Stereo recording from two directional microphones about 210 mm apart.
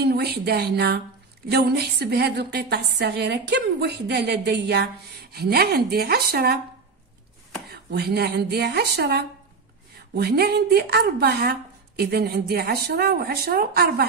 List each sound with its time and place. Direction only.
0.0 s a woman's voice: 50° right (ahead or behind)
7.7 s a woman's voice: 50° right (ahead or behind)